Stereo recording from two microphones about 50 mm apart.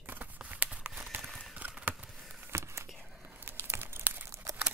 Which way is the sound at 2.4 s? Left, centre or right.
Right.